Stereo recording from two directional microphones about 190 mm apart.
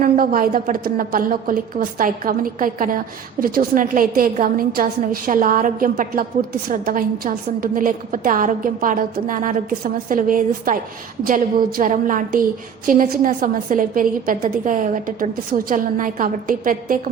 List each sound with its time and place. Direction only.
0.0 s a woman's voice: 50° right (ahead or behind)